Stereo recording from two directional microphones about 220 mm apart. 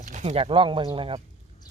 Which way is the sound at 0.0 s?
35° right (ahead or behind).